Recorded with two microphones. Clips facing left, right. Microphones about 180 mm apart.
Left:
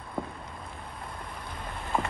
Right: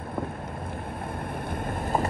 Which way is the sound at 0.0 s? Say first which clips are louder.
Right 4 dB; 60° right (ahead or behind).